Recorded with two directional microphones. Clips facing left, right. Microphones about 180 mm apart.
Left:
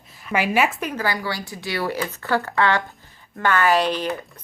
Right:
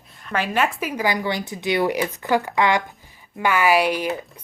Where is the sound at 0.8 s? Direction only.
10° right (ahead or behind).